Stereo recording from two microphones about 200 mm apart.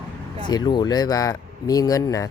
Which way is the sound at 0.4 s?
20° left (ahead or behind).